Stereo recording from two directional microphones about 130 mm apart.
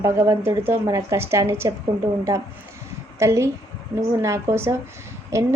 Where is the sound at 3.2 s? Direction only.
20° right (ahead or behind).